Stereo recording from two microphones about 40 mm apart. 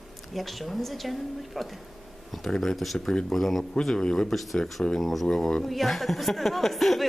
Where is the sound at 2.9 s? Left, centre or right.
Centre.